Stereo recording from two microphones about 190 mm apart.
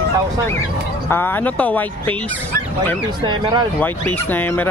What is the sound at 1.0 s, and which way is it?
Speech, 10° left (ahead or behind).